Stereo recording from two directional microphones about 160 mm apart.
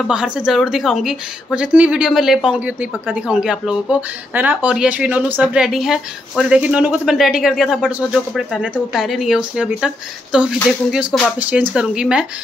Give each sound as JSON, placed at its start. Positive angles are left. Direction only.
{"t": 0.0, "sound": "a woman's voice", "side_deg": -5}